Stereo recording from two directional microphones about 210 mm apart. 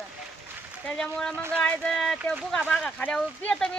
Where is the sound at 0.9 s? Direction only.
5° left (ahead or behind).